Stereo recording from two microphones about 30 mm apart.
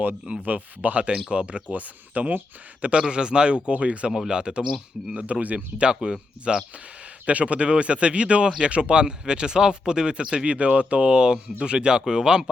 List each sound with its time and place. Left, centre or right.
0.4 s speech: right
1.7 s speech: right
2.9 s speech: right
4.3 s speech: right
5.1 s speech: right
6.5 s speech: right
7.3 s speech: right
8.4 s speech: right